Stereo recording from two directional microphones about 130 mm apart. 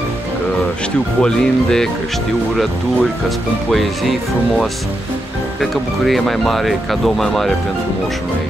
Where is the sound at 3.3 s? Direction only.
Centre (ahead or behind).